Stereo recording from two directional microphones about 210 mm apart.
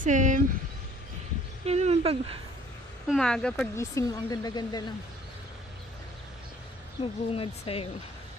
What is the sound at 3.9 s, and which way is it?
Speech, 15° left (ahead or behind).